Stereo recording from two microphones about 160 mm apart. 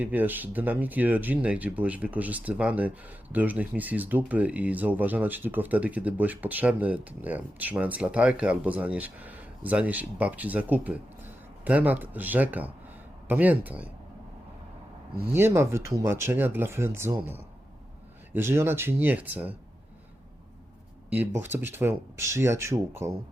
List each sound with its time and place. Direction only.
0.0 s speech: 10° right (ahead or behind)
15.3 s speech: 15° right (ahead or behind)
21.4 s speech: 15° right (ahead or behind)